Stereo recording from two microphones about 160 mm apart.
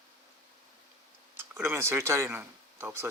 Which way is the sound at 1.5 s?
15° right (ahead or behind).